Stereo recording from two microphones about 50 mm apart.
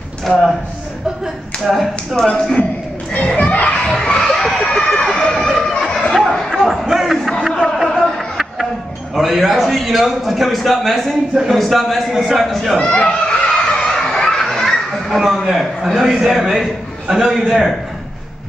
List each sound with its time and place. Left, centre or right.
0.2 s a man's voice: centre
1.6 s a man's voice: centre
2.2 s a child's voice: centre
4.2 s speech: centre
6.1 s a sound: centre
6.7 s crowd: centre
7.4 s a sound: centre
9.1 s a man's voice: centre
12.7 s children playing: centre
15.0 s a man's voice: centre